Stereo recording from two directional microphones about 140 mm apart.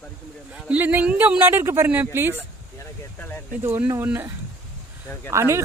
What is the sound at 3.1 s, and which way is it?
Speech, 15° left (ahead or behind).